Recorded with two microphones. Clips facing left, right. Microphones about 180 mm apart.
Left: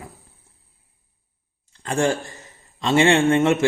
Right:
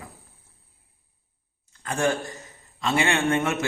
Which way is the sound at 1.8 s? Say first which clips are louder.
Left 3 dB; 30° left (ahead or behind).